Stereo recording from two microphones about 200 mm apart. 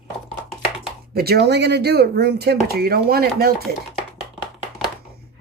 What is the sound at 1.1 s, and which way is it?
Speech, 55° right (ahead or behind).